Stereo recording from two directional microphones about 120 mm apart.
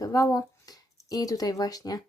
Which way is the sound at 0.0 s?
30° left (ahead or behind).